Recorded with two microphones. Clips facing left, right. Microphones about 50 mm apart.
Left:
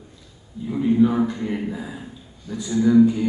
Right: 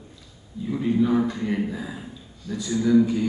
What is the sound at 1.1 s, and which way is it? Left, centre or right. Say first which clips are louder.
Speech: even; left.